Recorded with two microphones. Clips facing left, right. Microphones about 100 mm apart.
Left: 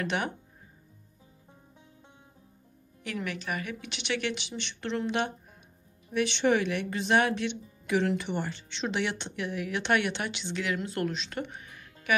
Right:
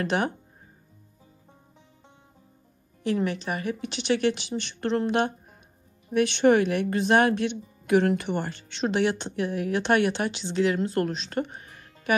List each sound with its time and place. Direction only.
0.0 s speech: 35° right (ahead or behind)
3.0 s speech: 30° right (ahead or behind)